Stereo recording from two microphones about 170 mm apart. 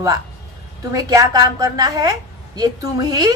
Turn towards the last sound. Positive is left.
turn(degrees=-20)  # may be behind; listen again after turning